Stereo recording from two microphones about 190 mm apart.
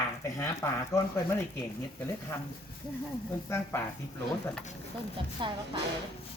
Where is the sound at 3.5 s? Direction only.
15° left (ahead or behind).